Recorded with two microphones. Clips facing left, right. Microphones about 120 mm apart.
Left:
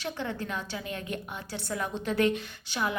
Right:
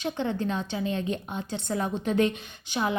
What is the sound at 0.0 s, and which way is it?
A woman's voice, 20° right (ahead or behind).